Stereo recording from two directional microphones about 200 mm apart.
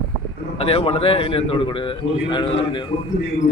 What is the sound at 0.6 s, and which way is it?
A man's voice, 30° left (ahead or behind).